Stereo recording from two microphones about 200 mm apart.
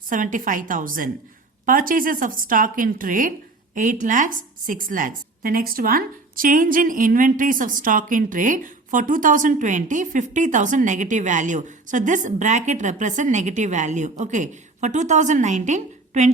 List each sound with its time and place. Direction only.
0.1 s a woman's voice: 40° right (ahead or behind)